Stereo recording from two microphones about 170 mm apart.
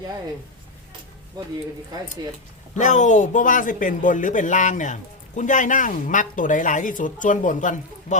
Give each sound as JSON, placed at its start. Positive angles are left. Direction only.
{"t": 2.7, "sound": "speech", "side_deg": 45}